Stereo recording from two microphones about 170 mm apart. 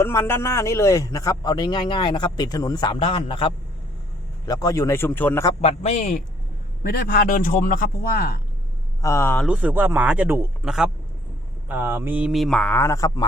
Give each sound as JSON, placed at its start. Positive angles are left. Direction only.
{"t": 0.0, "sound": "a man's voice", "side_deg": 15}
{"t": 4.4, "sound": "a man's voice", "side_deg": 20}
{"t": 5.6, "sound": "a man's voice", "side_deg": 40}
{"t": 6.8, "sound": "a man's voice", "side_deg": 60}
{"t": 9.0, "sound": "speech", "side_deg": 15}
{"t": 9.4, "sound": "a man's voice", "side_deg": -5}
{"t": 11.7, "sound": "speech", "side_deg": -10}